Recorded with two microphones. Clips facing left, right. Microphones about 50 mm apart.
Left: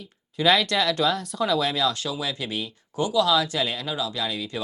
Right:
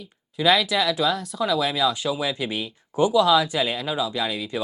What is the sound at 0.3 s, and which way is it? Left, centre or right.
Speech, centre.